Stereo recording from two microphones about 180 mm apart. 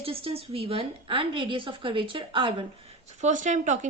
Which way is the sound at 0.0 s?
30° right (ahead or behind).